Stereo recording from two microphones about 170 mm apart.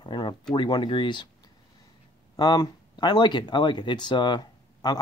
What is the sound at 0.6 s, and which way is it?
Speech, 25° left (ahead or behind).